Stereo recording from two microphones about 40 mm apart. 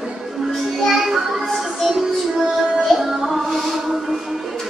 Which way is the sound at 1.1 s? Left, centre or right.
Centre.